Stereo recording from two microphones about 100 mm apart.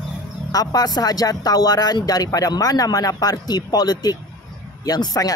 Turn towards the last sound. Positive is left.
turn(degrees=40)  # may be behind; listen again after turning